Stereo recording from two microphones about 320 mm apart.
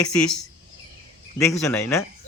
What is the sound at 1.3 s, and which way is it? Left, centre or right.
Speech, centre.